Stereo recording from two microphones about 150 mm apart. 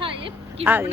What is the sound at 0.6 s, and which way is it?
Speech, 15° right (ahead or behind).